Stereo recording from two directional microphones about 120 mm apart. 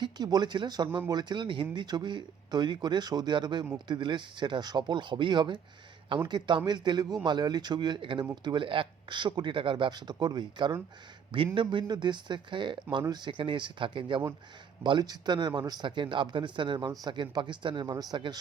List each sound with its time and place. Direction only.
0.0 s speech: 35° right (ahead or behind)